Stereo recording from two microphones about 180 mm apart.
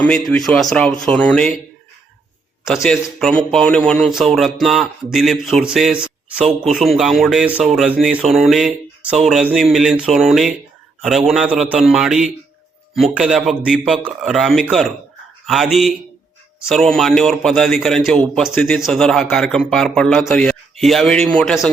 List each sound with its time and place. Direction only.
0.0 s speech: 5° left (ahead or behind)
2.6 s speech: centre (ahead or behind)